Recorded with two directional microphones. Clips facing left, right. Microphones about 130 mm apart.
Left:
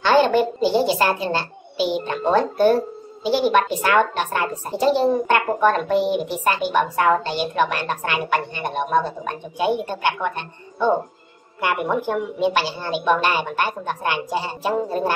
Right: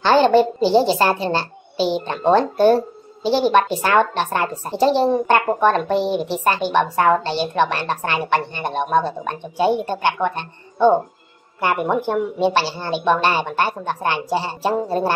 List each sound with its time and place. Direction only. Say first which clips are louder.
0.0 s a child's voice: right 3 dB; 30° right (ahead or behind)